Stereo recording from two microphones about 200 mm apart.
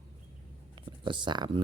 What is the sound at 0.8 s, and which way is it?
Speech, 25° right (ahead or behind).